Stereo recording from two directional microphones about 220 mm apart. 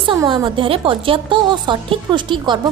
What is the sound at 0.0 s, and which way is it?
A woman's voice, 20° right (ahead or behind).